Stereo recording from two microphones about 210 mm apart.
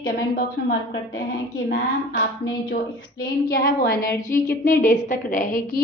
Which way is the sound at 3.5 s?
45° left (ahead or behind).